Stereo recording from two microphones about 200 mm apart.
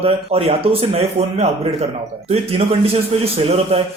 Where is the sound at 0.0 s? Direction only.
30° right (ahead or behind).